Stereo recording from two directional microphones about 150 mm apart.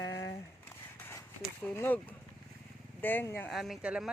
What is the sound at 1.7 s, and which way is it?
Speech, 15° left (ahead or behind).